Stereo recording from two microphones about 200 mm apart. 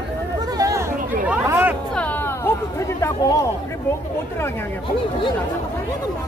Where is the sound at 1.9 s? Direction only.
10° left (ahead or behind).